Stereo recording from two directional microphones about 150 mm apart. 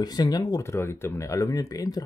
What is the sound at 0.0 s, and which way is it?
Speech, 25° left (ahead or behind).